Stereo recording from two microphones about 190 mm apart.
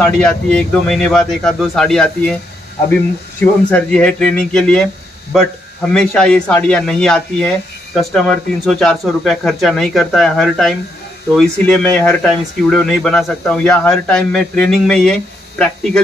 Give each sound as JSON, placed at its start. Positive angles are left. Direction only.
{"t": 0.0, "sound": "speech", "side_deg": 5}
{"t": 3.7, "sound": "speech", "side_deg": 5}
{"t": 5.9, "sound": "speech", "side_deg": 5}